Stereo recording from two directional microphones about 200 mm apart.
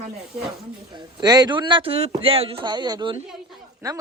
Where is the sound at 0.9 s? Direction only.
20° right (ahead or behind).